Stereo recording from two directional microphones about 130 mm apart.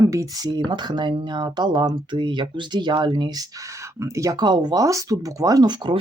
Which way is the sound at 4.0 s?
25° right (ahead or behind).